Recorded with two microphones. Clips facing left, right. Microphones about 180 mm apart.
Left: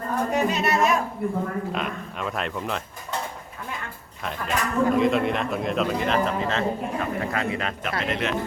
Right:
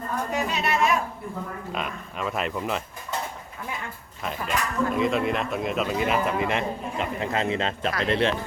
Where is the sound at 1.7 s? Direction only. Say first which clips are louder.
Left 2 dB; centre (ahead or behind).